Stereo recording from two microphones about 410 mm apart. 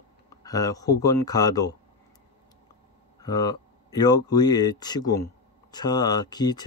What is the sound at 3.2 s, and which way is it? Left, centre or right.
Speech, centre.